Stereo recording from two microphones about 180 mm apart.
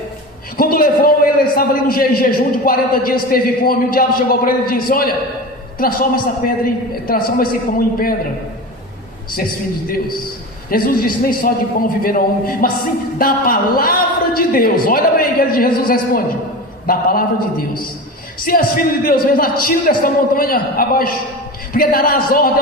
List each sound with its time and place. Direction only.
0.5 s a man's voice: 55° left (ahead or behind)
10.7 s a man's voice: 55° left (ahead or behind)
18.4 s a man's voice: 55° left (ahead or behind)